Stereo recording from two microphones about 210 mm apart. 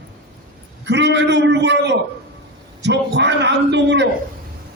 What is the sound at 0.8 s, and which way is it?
A man's voice, 55° right (ahead or behind).